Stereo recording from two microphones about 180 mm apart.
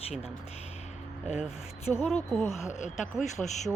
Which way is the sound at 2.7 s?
40° left (ahead or behind).